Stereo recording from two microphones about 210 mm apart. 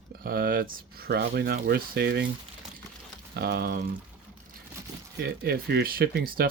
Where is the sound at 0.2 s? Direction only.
45° right (ahead or behind).